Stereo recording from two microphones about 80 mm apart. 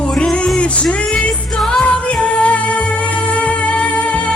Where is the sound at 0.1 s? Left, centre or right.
Centre.